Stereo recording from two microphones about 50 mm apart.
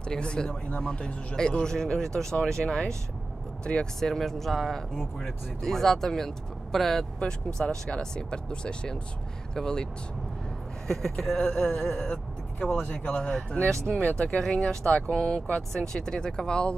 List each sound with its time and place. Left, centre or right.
0.0 s speech: centre
4.0 s speech: centre
7.2 s speech: centre
10.9 s speech: centre
11.5 s speech: centre
12.7 s speech: left
14.4 s speech: centre